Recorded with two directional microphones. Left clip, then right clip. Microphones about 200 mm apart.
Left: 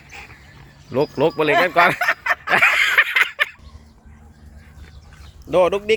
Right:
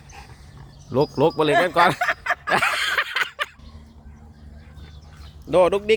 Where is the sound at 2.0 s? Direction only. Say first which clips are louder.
Left 3 dB; 40° left (ahead or behind).